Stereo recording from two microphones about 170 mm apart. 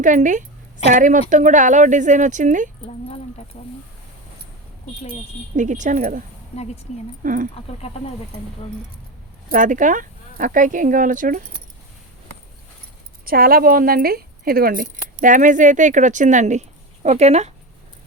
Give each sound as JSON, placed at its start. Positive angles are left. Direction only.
{"t": 0.0, "sound": "speech", "side_deg": -50}
{"t": 3.5, "sound": "speech", "side_deg": 35}
{"t": 5.5, "sound": "speech", "side_deg": -45}
{"t": 9.5, "sound": "speech", "side_deg": -50}
{"t": 13.2, "sound": "speech", "side_deg": -60}